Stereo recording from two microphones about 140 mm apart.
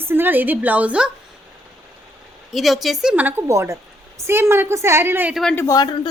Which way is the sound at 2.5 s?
Centre (ahead or behind).